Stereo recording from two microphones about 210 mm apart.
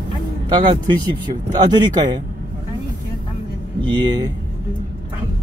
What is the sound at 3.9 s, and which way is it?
Speech, 20° right (ahead or behind).